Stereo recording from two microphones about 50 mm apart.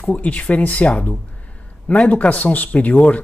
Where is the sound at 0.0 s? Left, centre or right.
Left.